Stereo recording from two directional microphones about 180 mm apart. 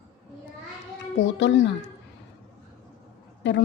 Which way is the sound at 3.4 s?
85° left.